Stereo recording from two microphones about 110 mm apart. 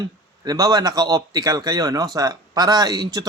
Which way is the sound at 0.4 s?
35° right (ahead or behind).